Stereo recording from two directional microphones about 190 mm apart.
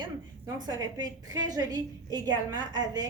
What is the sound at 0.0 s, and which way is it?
A woman's voice, 20° right (ahead or behind).